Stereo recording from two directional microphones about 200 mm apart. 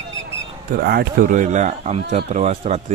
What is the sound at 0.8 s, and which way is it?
Speech, 50° right (ahead or behind).